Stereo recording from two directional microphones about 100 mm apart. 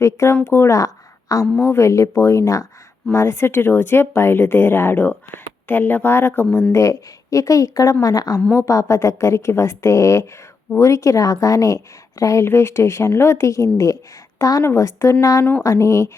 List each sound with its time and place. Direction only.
0.0 s a woman's voice: 30° left (ahead or behind)
6.7 s a woman's voice: 35° left (ahead or behind)